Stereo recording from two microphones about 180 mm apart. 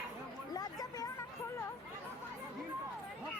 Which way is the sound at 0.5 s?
20° left (ahead or behind).